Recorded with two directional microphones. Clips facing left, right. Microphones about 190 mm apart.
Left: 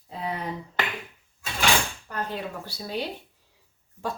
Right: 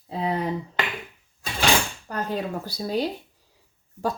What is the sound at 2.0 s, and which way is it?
Speech, 40° right (ahead or behind).